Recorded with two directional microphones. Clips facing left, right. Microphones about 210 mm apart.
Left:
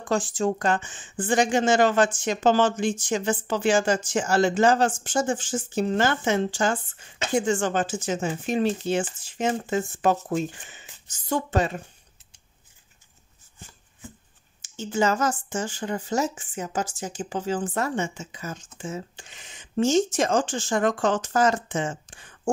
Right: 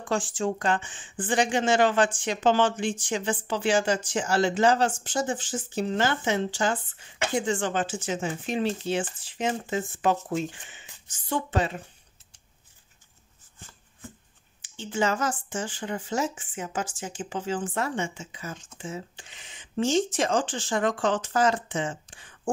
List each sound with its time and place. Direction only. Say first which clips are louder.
0.1 s speech: left 3 dB; 40° left (ahead or behind)
14.6 s speech: left 3 dB; 45° left (ahead or behind)